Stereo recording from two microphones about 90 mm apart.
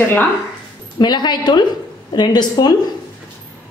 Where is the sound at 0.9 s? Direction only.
55° left (ahead or behind).